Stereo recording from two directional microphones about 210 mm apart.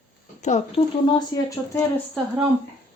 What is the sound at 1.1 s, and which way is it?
Speech, 20° left (ahead or behind).